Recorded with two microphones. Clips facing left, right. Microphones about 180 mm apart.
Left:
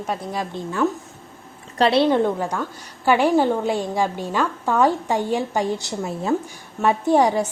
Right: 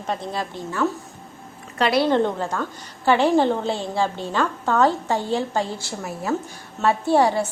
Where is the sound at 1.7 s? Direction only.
30° left (ahead or behind).